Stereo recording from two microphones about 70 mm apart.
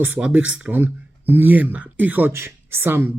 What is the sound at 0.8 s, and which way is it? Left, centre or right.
A man's voice, right.